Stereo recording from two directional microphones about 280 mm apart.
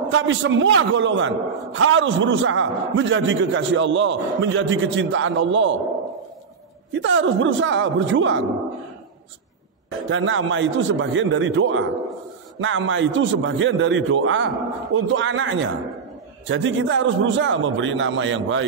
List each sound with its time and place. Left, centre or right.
0.1 s a man's voice: right
6.9 s a man's voice: right
10.0 s a man's voice: right